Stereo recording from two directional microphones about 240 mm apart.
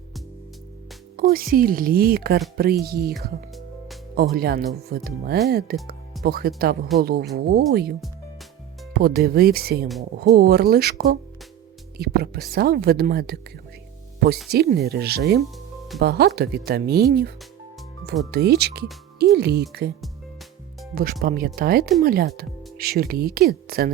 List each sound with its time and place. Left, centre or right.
1.1 s a woman's voice: right
4.2 s a woman's voice: right
14.5 s a woman's voice: right
20.9 s a woman's voice: right